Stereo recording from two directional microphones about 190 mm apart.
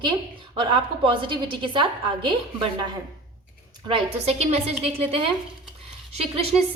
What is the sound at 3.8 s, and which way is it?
A woman's voice, 30° right (ahead or behind).